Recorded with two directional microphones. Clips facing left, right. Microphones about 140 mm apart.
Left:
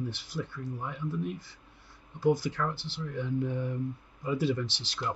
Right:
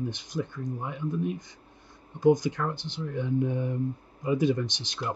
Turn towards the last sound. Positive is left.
turn(degrees=-20)  # may be behind; listen again after turning